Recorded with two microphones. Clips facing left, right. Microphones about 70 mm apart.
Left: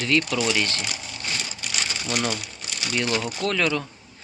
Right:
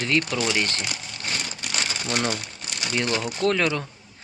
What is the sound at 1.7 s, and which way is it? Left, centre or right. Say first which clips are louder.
Crumpling: right 1 dB; right.